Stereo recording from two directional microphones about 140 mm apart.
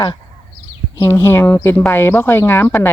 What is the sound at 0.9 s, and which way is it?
Speech, 20° left (ahead or behind).